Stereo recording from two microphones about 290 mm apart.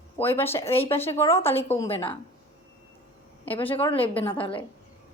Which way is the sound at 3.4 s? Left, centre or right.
Centre.